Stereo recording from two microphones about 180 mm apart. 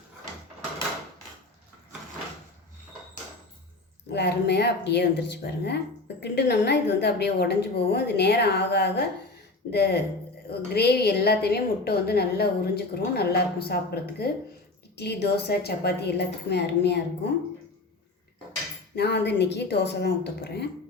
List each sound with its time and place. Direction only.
4.1 s a woman's voice: 65° left (ahead or behind)
18.9 s speech: 70° left (ahead or behind)